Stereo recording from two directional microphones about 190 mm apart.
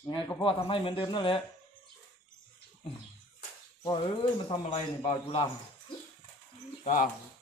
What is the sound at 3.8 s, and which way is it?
Speech, 25° left (ahead or behind).